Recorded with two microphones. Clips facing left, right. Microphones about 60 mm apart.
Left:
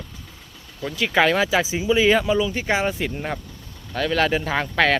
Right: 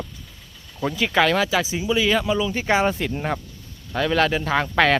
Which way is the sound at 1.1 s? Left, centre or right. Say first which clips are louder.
Left 2 dB; centre.